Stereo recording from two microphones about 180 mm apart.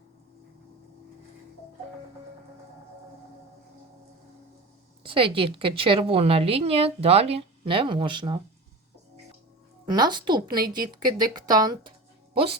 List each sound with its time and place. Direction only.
5.0 s a woman's voice: 30° right (ahead or behind)
9.9 s speech: 25° right (ahead or behind)